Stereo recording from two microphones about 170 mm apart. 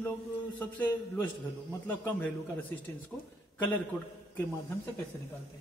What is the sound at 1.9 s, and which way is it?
A man's voice, 10° left (ahead or behind).